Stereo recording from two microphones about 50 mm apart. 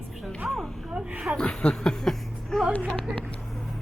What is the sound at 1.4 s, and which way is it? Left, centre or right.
Speech, centre.